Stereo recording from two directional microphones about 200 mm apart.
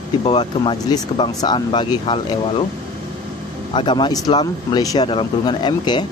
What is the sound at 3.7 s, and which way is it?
Speech, 25° left (ahead or behind).